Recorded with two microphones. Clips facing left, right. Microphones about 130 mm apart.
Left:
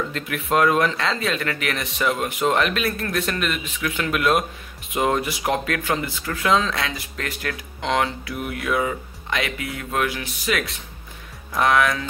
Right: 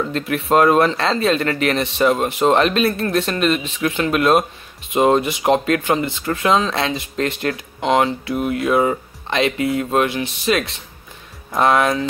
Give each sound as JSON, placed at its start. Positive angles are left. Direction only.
{"t": 0.1, "sound": "speech", "side_deg": -30}